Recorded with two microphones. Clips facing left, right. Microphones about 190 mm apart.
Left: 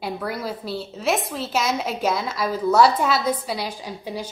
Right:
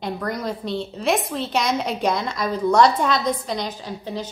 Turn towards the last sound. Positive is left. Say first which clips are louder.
# right 1 dB
turn(degrees=10)  # may be behind; listen again after turning